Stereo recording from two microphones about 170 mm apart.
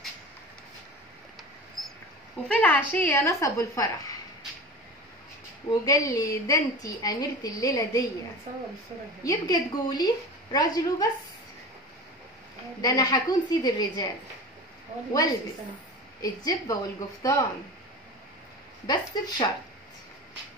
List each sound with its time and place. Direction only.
1.8 s a sound: centre (ahead or behind)
2.4 s a woman's voice: 5° left (ahead or behind)
5.7 s a woman's voice: 20° left (ahead or behind)
9.2 s a woman's voice: 20° left (ahead or behind)
12.8 s a woman's voice: 20° left (ahead or behind)
16.2 s a woman's voice: 20° left (ahead or behind)
18.9 s a woman's voice: 25° left (ahead or behind)